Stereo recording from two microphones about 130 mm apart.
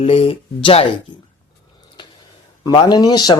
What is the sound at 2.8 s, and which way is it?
Speech, 30° left (ahead or behind).